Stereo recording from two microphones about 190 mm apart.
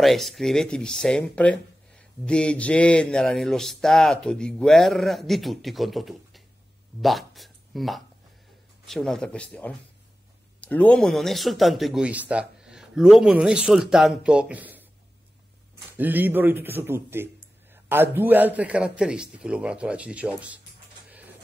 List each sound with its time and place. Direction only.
0.0 s speech: centre (ahead or behind)
16.0 s speech: 10° right (ahead or behind)